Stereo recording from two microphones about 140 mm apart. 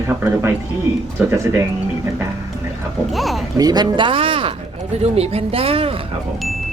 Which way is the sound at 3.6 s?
30° right (ahead or behind).